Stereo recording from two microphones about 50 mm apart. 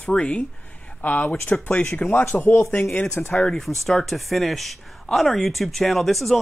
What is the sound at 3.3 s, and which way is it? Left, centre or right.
Speech, centre.